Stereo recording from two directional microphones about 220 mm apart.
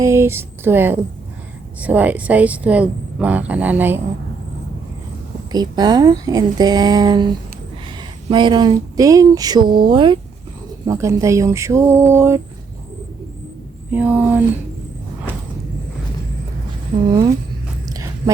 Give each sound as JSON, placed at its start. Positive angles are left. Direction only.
{"t": 0.0, "sound": "speech", "side_deg": -10}
{"t": 5.5, "sound": "speech", "side_deg": -20}
{"t": 13.9, "sound": "speech", "side_deg": -5}
{"t": 17.8, "sound": "a sound", "side_deg": -15}